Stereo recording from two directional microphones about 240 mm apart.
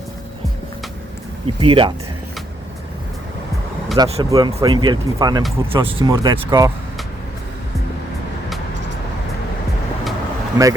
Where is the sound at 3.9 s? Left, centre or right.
Right.